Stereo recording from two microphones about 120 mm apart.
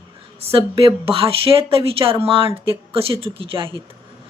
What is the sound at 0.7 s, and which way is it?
A woman's voice, 45° right (ahead or behind).